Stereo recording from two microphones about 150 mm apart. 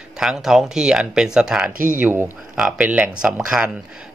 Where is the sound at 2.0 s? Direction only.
15° right (ahead or behind).